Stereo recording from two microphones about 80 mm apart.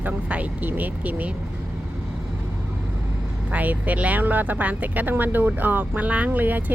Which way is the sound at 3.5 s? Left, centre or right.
Centre.